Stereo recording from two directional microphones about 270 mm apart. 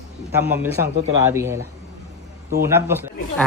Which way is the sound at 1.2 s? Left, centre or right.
Centre.